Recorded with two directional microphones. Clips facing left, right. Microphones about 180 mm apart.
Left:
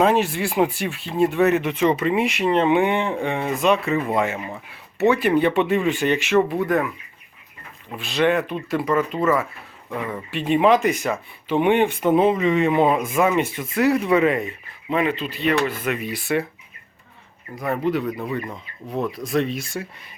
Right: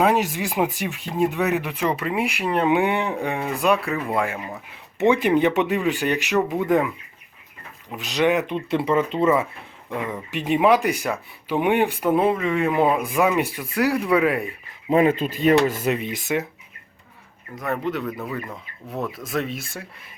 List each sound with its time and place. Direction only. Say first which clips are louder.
0.0 s speech: left 2 dB; 15° right (ahead or behind)
4.9 s speech: even; 15° right (ahead or behind)
7.9 s speech: even; 15° right (ahead or behind)
14.8 s a man's voice: right 4 dB; 40° right (ahead or behind)
16.3 s speech: left 2 dB; 10° right (ahead or behind)
17.5 s speech: left 3 dB; 5° left (ahead or behind)